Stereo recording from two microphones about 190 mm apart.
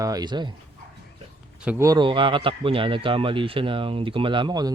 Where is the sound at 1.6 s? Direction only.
15° right (ahead or behind).